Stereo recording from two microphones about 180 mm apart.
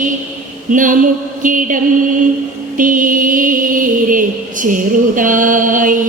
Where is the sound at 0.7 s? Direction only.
45° right (ahead or behind).